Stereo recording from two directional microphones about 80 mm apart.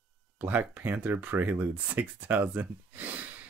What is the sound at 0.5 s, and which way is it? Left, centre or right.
Speech, right.